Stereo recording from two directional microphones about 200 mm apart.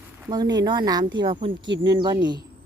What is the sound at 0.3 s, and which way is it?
A woman's voice, 20° right (ahead or behind).